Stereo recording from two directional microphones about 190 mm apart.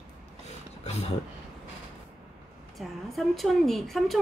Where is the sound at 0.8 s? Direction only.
35° left (ahead or behind).